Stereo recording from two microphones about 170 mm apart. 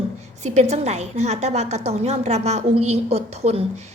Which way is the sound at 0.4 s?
40° right (ahead or behind).